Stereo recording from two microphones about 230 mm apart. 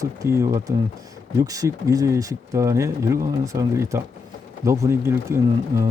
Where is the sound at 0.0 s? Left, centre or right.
Centre.